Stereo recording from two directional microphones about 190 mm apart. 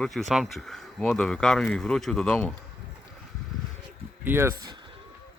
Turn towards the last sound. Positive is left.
turn(degrees=-15)  # may be behind; listen again after turning